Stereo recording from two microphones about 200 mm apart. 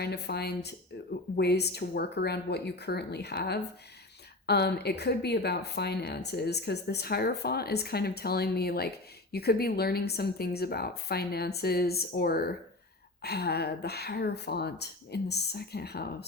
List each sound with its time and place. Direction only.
0.0 s speech: 55° left (ahead or behind)